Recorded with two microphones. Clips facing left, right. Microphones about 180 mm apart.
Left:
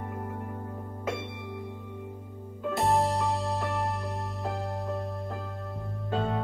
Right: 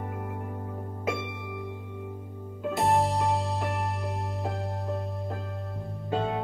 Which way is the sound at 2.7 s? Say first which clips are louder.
Right 1 dB; centre (ahead or behind).